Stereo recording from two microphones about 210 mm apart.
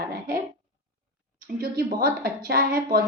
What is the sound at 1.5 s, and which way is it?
Speech, 45° right (ahead or behind).